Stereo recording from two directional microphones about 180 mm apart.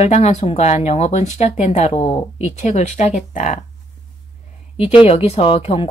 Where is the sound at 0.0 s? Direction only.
40° left (ahead or behind).